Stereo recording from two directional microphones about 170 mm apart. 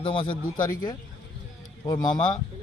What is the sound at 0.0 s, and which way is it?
A man's voice, 30° left (ahead or behind).